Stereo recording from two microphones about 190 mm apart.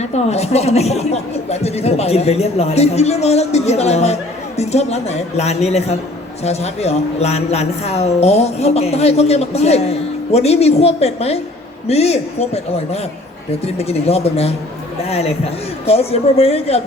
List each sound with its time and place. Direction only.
0.0 s speech: 35° left (ahead or behind)